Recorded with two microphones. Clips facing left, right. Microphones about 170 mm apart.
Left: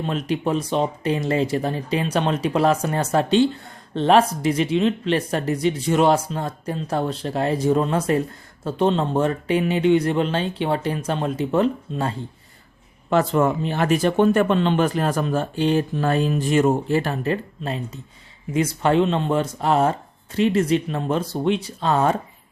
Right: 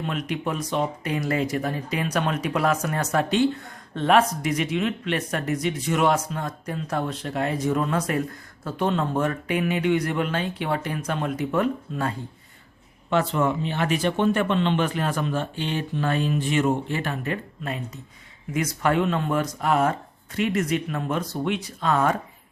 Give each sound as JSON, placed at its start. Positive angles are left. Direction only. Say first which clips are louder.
{"t": 0.0, "sound": "speech", "louder": "left 4 dB", "side_deg": 30}
{"t": 13.1, "sound": "speech", "louder": "left 4 dB", "side_deg": 40}